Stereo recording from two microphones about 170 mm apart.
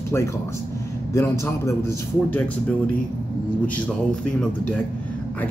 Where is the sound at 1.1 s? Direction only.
15° left (ahead or behind).